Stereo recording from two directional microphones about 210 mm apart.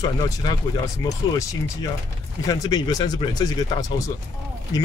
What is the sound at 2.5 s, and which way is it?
Speech, 15° left (ahead or behind).